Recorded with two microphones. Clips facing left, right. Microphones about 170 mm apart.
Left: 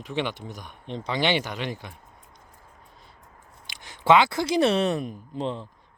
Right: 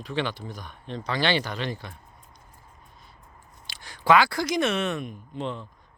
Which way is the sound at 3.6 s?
20° left (ahead or behind).